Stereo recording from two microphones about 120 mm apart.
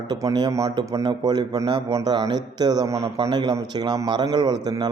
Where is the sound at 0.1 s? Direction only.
30° right (ahead or behind).